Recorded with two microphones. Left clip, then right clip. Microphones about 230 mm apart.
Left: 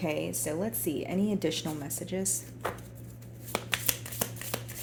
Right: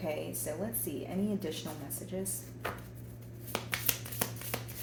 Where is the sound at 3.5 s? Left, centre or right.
Left.